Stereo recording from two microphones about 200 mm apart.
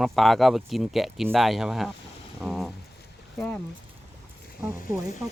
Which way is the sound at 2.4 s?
Centre (ahead or behind).